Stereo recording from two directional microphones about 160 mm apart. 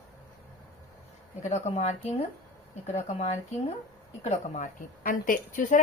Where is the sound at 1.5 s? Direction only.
40° left (ahead or behind).